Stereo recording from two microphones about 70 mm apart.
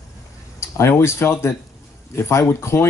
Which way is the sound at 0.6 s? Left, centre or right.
Left.